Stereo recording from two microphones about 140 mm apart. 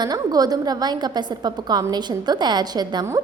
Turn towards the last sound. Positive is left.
turn(degrees=-30)  # may be behind; listen again after turning